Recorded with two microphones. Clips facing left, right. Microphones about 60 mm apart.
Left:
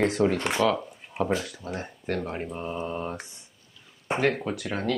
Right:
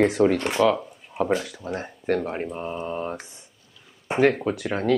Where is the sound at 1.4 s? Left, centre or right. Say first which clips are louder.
Right 3 dB; centre.